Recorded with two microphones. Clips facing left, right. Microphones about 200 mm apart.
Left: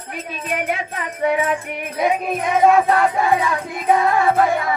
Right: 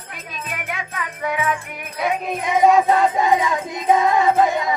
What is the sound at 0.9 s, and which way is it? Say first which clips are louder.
Music: left 4 dB; 35° left (ahead or behind).